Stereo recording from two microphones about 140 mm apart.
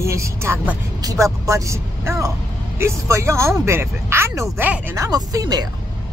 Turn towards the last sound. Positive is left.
turn(degrees=-25)  # may be behind; listen again after turning